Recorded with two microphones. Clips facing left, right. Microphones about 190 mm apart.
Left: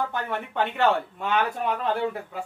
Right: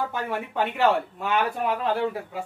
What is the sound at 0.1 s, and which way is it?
Speech, 5° right (ahead or behind).